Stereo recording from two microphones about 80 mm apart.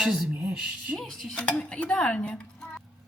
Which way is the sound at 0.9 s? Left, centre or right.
Centre.